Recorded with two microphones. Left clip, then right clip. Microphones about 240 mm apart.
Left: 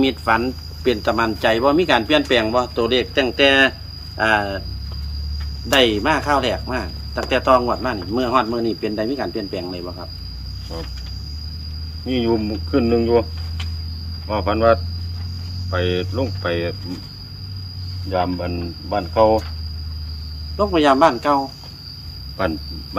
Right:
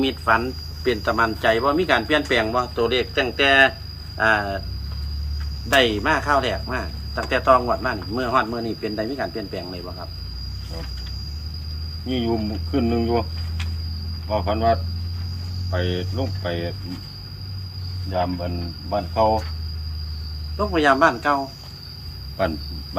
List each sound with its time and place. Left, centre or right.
0.0 s speech: left
5.6 s speech: left
12.0 s cricket: centre
14.3 s cricket: centre
18.4 s cricket: centre
20.6 s speech: left
22.4 s speech: centre